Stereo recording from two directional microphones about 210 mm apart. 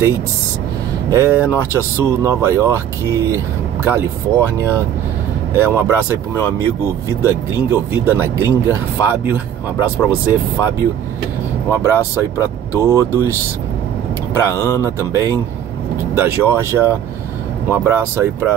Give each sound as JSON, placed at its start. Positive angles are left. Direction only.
{"t": 1.1, "sound": "speech", "side_deg": -10}
{"t": 11.7, "sound": "speech", "side_deg": -15}